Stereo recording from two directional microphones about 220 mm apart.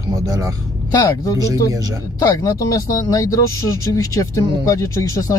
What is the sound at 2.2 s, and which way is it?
Speech, 15° left (ahead or behind).